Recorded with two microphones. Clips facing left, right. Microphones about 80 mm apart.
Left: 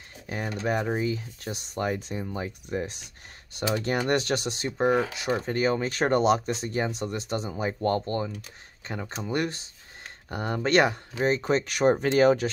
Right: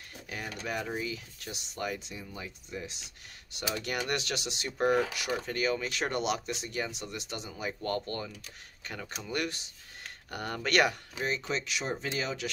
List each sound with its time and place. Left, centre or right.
0.3 s speech: left
3.5 s speech: left
4.7 s speech: left